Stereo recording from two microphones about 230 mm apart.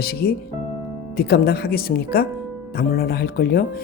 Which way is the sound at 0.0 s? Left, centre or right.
Left.